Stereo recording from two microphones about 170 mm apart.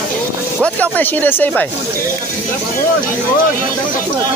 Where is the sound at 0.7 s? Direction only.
10° left (ahead or behind).